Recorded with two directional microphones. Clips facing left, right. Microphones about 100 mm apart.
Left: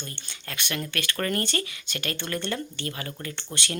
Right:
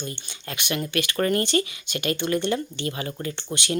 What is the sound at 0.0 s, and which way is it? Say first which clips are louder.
Speech: right 6 dB; 15° right (ahead or behind).